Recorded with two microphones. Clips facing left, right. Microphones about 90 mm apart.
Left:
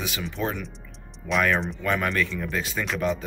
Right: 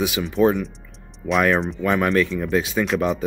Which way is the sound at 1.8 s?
20° right (ahead or behind).